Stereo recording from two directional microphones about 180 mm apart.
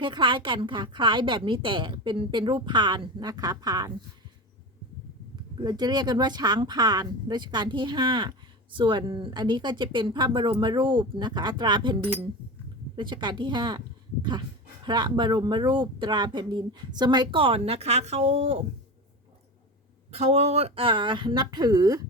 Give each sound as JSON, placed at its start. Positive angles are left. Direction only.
{"t": 0.0, "sound": "speech", "side_deg": -25}
{"t": 5.6, "sound": "speech", "side_deg": -25}
{"t": 13.0, "sound": "speech", "side_deg": -25}
{"t": 20.1, "sound": "speech", "side_deg": -35}